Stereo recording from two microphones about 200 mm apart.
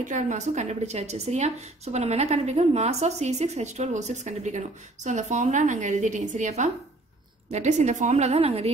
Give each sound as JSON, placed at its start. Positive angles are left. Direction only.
{"t": 0.0, "sound": "a woman's voice", "side_deg": -40}